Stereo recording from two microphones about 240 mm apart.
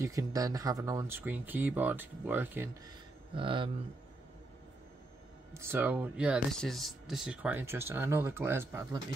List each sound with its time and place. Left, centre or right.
0.0 s speech: centre
3.3 s speech: right
5.5 s speech: centre